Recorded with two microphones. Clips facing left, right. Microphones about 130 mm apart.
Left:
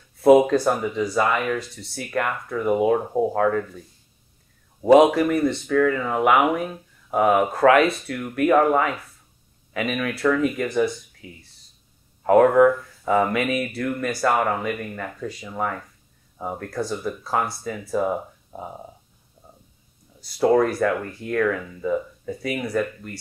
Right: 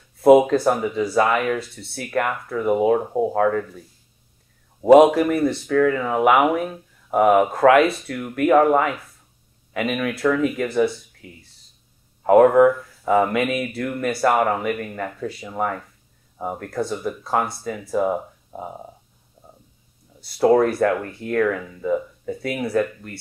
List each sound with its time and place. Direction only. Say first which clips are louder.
0.2 s speech: right 1 dB; centre (ahead or behind)
4.8 s speech: right 2 dB; centre (ahead or behind)
12.2 s speech: right 2 dB; 5° right (ahead or behind)
19.4 s a sound: right 2 dB; 30° right (ahead or behind)
20.2 s speech: right 2 dB; 5° right (ahead or behind)